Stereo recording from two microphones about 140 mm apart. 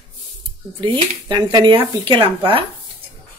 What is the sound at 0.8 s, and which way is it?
Speech, 35° right (ahead or behind).